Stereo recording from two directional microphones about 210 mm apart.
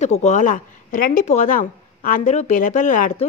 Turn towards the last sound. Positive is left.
turn(degrees=40)  # may be behind; listen again after turning